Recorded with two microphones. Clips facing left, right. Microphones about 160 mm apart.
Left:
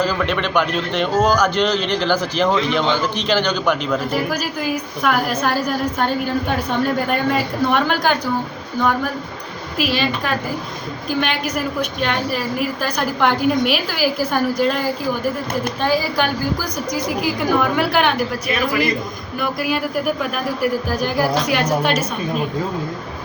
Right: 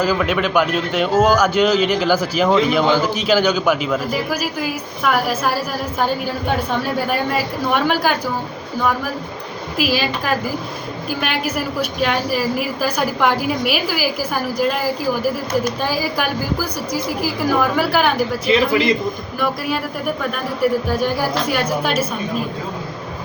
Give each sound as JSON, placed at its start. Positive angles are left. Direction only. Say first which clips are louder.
{"t": 0.0, "sound": "a man's voice", "louder": "right 2 dB", "side_deg": -5}
{"t": 9.7, "sound": "a woman's voice", "louder": "even", "side_deg": -5}
{"t": 18.4, "sound": "a man's voice", "louder": "right 6 dB", "side_deg": -25}
{"t": 19.4, "sound": "a woman's voice", "louder": "left 1 dB", "side_deg": 0}